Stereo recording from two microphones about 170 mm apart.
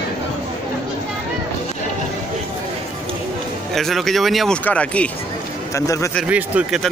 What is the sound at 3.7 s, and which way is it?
Speech, centre (ahead or behind).